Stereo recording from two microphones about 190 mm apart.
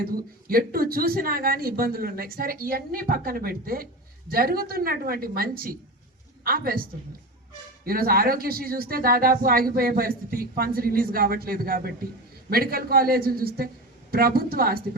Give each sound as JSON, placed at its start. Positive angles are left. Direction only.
{"t": 0.0, "sound": "a man's voice", "side_deg": -50}
{"t": 7.9, "sound": "speech", "side_deg": -50}